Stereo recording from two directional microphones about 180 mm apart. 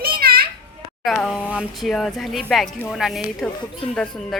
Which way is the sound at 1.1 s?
Centre (ahead or behind).